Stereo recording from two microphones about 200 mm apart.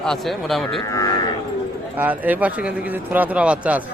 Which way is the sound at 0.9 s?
15° left (ahead or behind).